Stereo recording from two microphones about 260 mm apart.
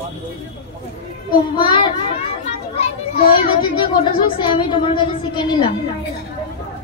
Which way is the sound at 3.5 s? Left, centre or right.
Centre.